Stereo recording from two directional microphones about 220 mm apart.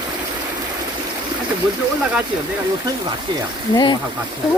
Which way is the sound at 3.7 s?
20° left (ahead or behind).